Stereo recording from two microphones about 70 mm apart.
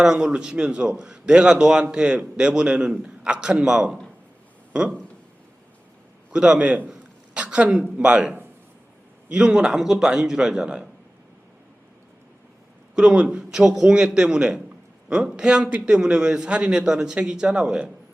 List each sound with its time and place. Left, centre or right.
0.0 s a man's voice: centre
6.3 s a man's voice: centre
13.0 s a man's voice: centre